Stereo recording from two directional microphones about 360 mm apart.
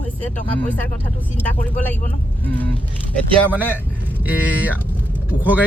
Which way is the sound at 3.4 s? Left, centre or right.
Centre.